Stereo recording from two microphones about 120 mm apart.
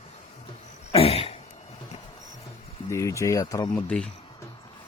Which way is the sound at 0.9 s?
55° left (ahead or behind).